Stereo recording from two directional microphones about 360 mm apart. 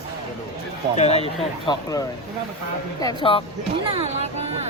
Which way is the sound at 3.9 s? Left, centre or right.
Centre.